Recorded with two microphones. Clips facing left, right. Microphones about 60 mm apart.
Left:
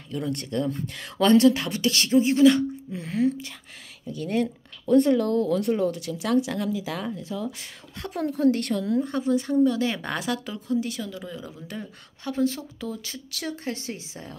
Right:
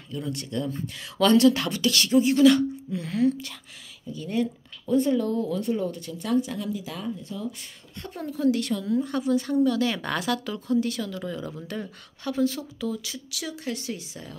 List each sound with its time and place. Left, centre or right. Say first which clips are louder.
0.1 s speech: left 3 dB; left
1.1 s speech: left 1 dB; left
4.0 s speech: left 2 dB; left
8.0 s a woman's voice: left 7 dB; left
8.3 s speech: left 1 dB; left
9.0 s speech: even; left; by 11.5 s centre
12.3 s speech: even; left